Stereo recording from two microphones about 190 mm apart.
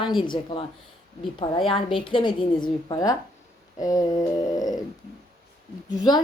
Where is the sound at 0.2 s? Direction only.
25° left (ahead or behind).